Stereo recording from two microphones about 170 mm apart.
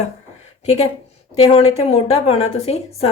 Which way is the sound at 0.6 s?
40° left (ahead or behind).